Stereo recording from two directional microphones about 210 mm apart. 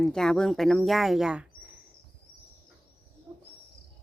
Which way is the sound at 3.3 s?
10° right (ahead or behind).